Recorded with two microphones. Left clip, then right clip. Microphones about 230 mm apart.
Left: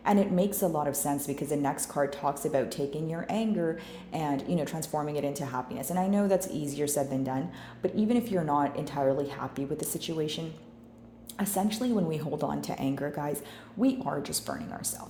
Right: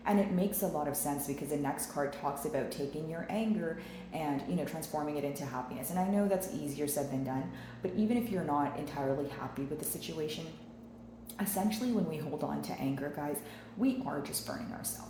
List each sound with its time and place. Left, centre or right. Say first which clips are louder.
0.0 s speech: left 6 dB; left
11.3 s speech: left 5 dB; left